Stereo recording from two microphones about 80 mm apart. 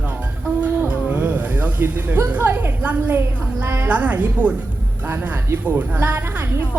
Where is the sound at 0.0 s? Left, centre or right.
Right.